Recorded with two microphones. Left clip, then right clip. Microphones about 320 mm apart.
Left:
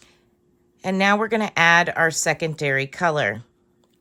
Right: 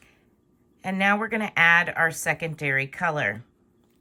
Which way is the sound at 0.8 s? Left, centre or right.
Centre.